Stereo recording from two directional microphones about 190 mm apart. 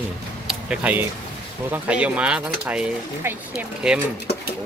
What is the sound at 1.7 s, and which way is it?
Speech, 5° right (ahead or behind).